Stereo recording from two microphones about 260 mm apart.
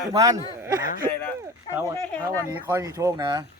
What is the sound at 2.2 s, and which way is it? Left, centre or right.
Speech, centre.